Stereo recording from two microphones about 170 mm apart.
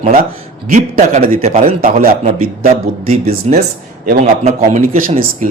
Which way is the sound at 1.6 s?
55° right (ahead or behind).